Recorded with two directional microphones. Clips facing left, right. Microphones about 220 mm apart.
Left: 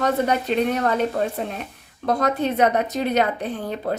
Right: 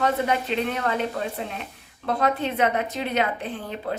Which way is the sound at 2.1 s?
40° left (ahead or behind).